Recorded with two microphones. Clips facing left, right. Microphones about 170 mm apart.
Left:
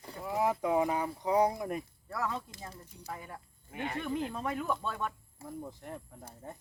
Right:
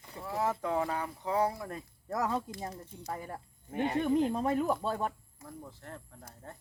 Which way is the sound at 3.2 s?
40° right (ahead or behind).